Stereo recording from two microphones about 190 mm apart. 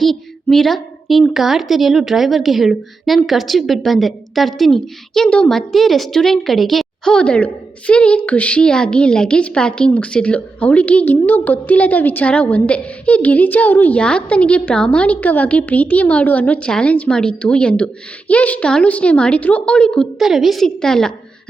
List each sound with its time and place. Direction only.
0.0 s a woman's voice: centre (ahead or behind)